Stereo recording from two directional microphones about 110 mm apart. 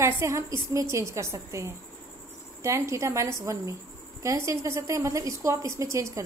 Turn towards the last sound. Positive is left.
turn(degrees=-30)  # may be behind; listen again after turning